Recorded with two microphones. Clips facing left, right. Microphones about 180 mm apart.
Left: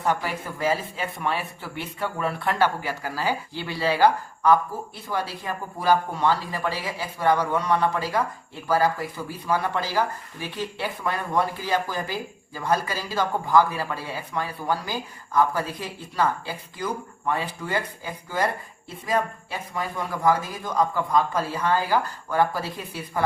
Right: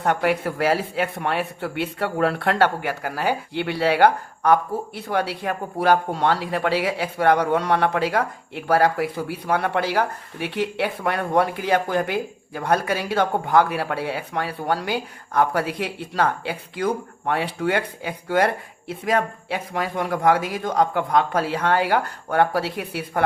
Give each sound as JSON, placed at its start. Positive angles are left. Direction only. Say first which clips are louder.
{"t": 0.0, "sound": "speech", "louder": "right 5 dB", "side_deg": -65}